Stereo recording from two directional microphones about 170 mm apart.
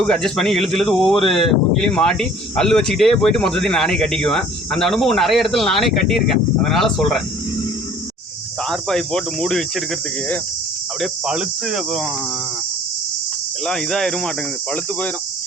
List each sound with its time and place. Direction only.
0.0 s speech: 5° left (ahead or behind)
8.7 s speech: 5° left (ahead or behind)
11.0 s speech: 5° right (ahead or behind)
13.7 s speech: centre (ahead or behind)